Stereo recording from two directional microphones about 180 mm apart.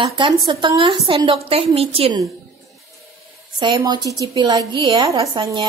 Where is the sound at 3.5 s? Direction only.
25° right (ahead or behind).